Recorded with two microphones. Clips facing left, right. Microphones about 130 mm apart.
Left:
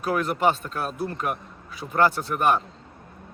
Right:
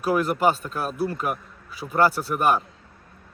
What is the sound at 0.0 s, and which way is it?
A man's voice, 5° right (ahead or behind).